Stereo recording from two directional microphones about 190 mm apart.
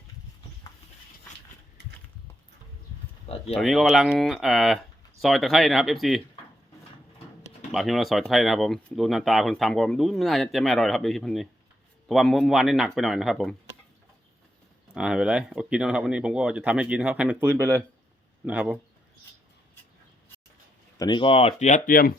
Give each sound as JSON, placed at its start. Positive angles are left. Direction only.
{"t": 1.8, "sound": "a sound", "side_deg": -65}
{"t": 3.5, "sound": "speech", "side_deg": 0}
{"t": 7.7, "sound": "speech", "side_deg": 0}
{"t": 14.9, "sound": "speech", "side_deg": -5}
{"t": 21.0, "sound": "speech", "side_deg": 25}